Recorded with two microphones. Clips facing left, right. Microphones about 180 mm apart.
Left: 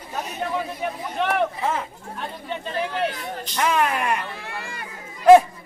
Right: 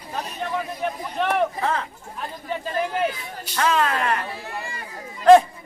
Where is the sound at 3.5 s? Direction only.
15° left (ahead or behind).